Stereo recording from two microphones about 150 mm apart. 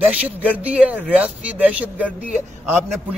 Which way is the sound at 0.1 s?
10° right (ahead or behind).